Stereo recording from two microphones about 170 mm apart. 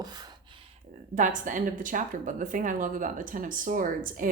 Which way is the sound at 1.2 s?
50° right (ahead or behind).